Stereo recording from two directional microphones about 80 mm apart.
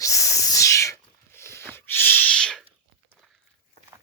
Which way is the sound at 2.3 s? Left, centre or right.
Centre.